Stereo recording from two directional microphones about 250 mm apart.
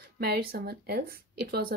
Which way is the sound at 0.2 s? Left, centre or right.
Right.